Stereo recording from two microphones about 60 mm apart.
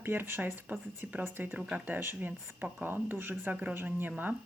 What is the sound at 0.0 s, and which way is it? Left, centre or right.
Speech, right.